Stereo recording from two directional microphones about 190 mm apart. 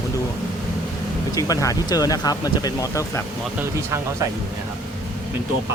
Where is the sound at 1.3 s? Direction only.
20° left (ahead or behind).